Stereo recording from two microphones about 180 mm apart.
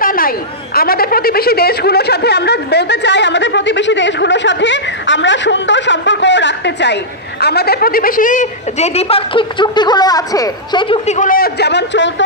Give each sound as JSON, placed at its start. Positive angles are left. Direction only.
{"t": 0.0, "sound": "chatter", "side_deg": 50}
{"t": 0.7, "sound": "a woman's voice", "side_deg": 55}
{"t": 11.1, "sound": "a woman's voice", "side_deg": 45}